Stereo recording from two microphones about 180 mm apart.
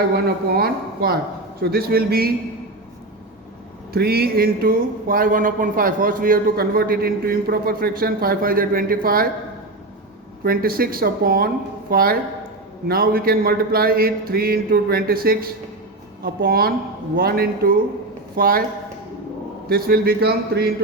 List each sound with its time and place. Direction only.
0.1 s speech: 60° right (ahead or behind)
3.9 s speech: 60° right (ahead or behind)
10.4 s speech: 55° right (ahead or behind)
19.6 s speech: 55° right (ahead or behind)